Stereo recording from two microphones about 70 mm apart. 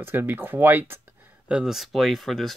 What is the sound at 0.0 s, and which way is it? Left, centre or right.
Speech, right.